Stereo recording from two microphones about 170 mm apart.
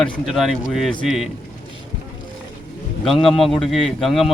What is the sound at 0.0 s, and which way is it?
A man's voice, centre (ahead or behind).